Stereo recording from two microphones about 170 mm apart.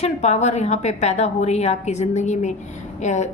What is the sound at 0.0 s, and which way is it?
A woman's voice, 40° left (ahead or behind).